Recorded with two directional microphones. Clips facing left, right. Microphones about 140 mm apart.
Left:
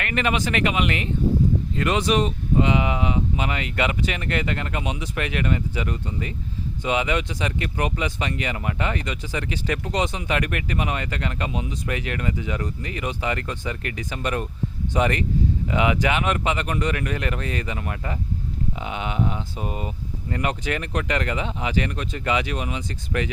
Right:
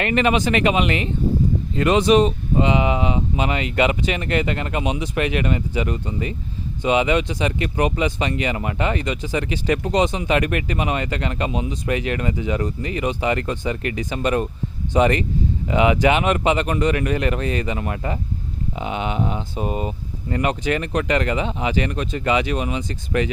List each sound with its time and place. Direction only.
0.0 s speech: 25° right (ahead or behind)